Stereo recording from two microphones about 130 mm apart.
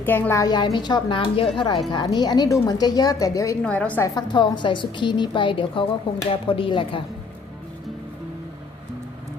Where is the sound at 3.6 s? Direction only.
10° left (ahead or behind).